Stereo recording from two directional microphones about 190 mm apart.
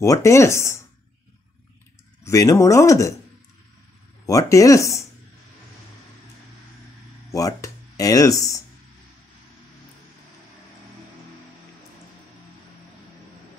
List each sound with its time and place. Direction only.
0.0 s speech: 15° left (ahead or behind)
2.2 s speech: 15° left (ahead or behind)
4.3 s speech: 15° left (ahead or behind)
7.2 s speech: 15° left (ahead or behind)